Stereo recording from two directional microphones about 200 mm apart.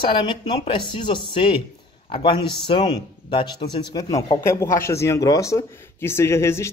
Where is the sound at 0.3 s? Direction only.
25° left (ahead or behind).